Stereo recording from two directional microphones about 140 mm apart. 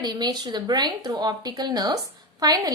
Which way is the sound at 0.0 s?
30° right (ahead or behind).